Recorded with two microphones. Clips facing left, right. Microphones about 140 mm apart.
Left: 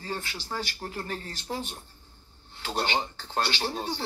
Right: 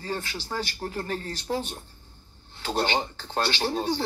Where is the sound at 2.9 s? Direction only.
45° right (ahead or behind).